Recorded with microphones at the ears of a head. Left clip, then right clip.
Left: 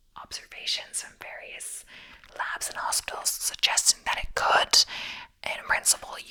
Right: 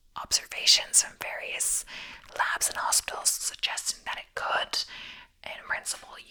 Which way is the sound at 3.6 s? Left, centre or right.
Left.